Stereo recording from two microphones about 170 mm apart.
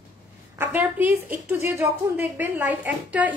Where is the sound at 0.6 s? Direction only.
10° right (ahead or behind).